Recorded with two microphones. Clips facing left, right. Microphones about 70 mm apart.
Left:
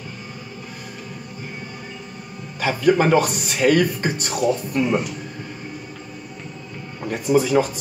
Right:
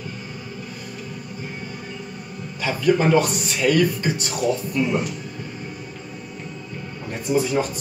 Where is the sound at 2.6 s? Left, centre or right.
Left.